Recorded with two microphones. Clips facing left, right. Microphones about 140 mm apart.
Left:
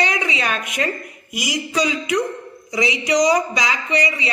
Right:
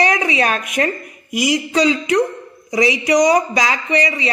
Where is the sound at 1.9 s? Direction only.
30° right (ahead or behind).